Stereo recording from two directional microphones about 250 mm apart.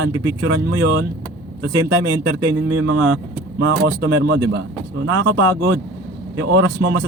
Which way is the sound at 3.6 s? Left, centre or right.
Right.